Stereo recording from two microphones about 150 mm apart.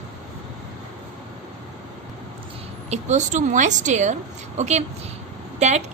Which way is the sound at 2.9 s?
50° right (ahead or behind).